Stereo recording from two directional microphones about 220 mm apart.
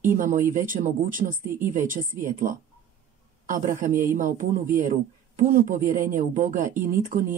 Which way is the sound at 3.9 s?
10° right (ahead or behind).